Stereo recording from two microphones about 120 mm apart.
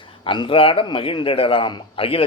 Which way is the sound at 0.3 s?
45° left (ahead or behind).